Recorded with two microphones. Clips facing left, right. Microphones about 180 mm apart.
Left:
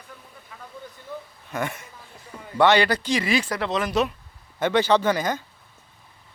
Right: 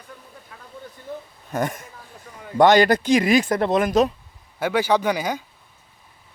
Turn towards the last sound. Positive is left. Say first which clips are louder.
# even
turn(degrees=-10)  # may be behind; listen again after turning